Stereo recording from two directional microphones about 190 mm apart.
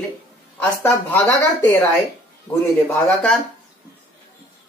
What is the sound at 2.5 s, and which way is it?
Speech, 15° left (ahead or behind).